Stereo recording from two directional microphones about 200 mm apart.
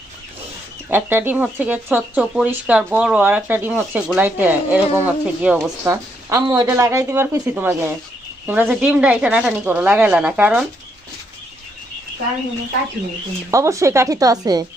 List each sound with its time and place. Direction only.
0.9 s speech: 10° right (ahead or behind)
5.8 s speech: 15° right (ahead or behind)
13.5 s speech: 15° right (ahead or behind)